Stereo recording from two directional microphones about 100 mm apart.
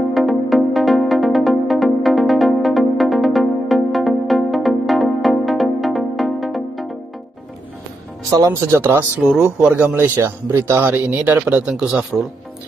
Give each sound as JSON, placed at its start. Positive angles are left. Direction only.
{"t": 0.1, "sound": "music", "side_deg": 0}
{"t": 8.3, "sound": "speech", "side_deg": -30}
{"t": 9.2, "sound": "speech", "side_deg": -5}